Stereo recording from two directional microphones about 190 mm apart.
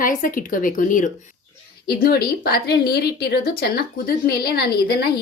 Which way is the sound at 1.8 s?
50° left (ahead or behind).